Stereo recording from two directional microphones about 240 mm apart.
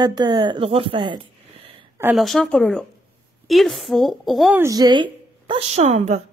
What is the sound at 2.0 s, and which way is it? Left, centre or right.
A woman's voice, centre.